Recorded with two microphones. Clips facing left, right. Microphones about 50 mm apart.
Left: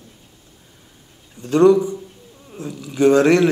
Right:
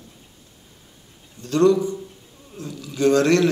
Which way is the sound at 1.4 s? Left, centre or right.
Left.